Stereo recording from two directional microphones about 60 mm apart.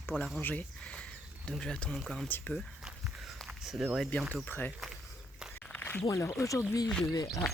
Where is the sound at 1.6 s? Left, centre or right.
Centre.